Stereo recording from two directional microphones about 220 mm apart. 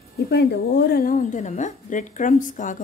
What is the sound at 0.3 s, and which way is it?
A woman's voice, 50° left (ahead or behind).